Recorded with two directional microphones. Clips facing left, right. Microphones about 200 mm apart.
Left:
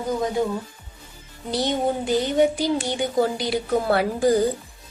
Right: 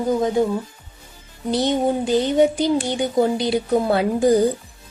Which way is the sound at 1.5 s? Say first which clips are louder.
Right 3 dB; 20° right (ahead or behind).